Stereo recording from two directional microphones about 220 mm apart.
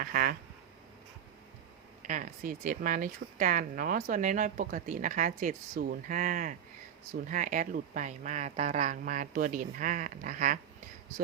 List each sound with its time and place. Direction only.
0.0 s speech: 40° right (ahead or behind)
2.0 s speech: 35° right (ahead or behind)